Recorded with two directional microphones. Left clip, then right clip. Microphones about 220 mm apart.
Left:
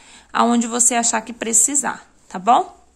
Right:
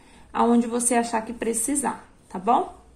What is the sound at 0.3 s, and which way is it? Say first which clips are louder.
A woman's voice: left 4 dB; 35° left (ahead or behind).